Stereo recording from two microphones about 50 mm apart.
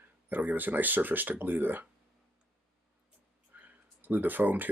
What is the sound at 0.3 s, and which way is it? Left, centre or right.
Speech, right.